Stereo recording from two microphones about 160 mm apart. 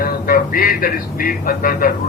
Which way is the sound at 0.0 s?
65° left (ahead or behind).